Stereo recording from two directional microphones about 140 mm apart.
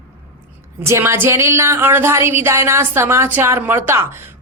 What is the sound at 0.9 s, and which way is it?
A woman's voice, 20° right (ahead or behind).